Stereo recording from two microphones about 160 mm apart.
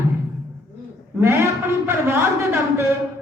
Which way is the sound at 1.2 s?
15° right (ahead or behind).